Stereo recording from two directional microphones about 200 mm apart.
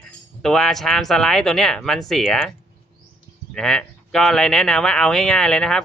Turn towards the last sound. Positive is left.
turn(degrees=5)  # may be behind; listen again after turning